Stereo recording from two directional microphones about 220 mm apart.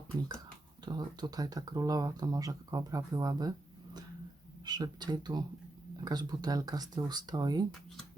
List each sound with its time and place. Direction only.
0.9 s speech: 20° right (ahead or behind)
4.6 s speech: 20° right (ahead or behind)